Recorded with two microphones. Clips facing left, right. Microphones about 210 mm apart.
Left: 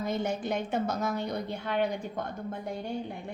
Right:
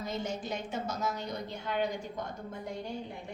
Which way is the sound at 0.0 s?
55° left (ahead or behind).